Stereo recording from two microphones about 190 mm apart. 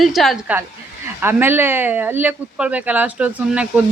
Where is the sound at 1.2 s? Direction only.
10° right (ahead or behind).